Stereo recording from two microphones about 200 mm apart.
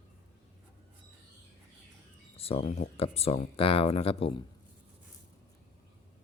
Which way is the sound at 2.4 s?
30° left (ahead or behind).